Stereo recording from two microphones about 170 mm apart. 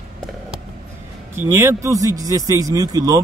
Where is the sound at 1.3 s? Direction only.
15° right (ahead or behind).